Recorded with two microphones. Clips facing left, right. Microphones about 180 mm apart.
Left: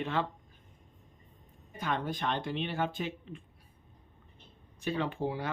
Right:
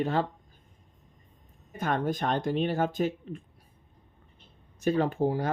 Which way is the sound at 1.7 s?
45° right (ahead or behind).